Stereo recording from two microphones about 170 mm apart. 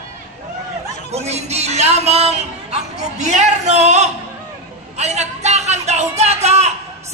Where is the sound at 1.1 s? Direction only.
40° right (ahead or behind).